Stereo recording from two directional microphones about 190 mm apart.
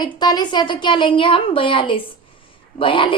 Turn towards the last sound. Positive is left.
turn(degrees=25)  # may be behind; listen again after turning